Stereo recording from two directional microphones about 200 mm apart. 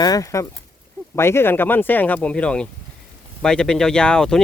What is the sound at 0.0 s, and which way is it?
Speech, 15° left (ahead or behind).